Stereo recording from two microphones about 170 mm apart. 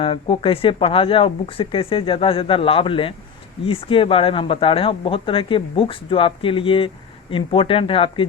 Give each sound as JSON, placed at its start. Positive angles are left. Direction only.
{"t": 0.0, "sound": "speech", "side_deg": 30}